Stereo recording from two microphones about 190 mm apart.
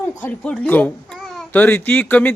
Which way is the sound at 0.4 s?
5° left (ahead or behind).